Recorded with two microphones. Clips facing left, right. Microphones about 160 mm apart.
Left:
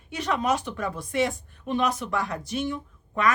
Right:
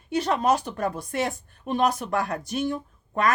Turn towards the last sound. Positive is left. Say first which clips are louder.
# right 1 dB
turn(degrees=-40)  # may be behind; listen again after turning